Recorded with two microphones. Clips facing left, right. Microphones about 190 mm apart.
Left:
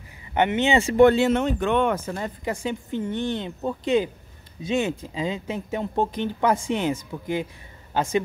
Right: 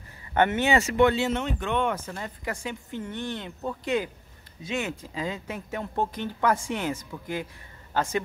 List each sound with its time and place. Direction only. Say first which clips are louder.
0.3 s speech: left 2 dB; 15° left (ahead or behind)
0.9 s speech: left 6 dB; 50° left (ahead or behind)
2.4 s speech: left 5 dB; 25° left (ahead or behind)